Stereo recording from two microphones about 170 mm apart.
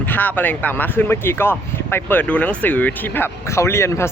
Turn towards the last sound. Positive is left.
turn(degrees=15)  # may be behind; listen again after turning